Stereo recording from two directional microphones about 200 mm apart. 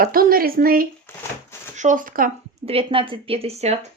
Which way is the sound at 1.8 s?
40° right (ahead or behind).